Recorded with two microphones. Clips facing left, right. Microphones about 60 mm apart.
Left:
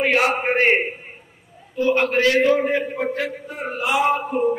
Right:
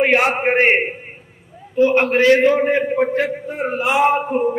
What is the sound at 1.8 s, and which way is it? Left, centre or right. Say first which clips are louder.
A man's voice: right 4 dB; right.